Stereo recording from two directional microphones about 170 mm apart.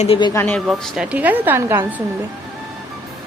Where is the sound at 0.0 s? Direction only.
30° left (ahead or behind).